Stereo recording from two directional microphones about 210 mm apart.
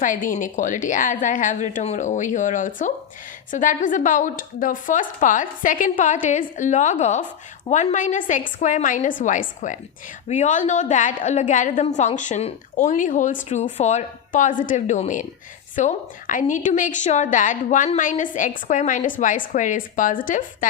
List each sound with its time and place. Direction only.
0.0 s a woman's voice: 40° left (ahead or behind)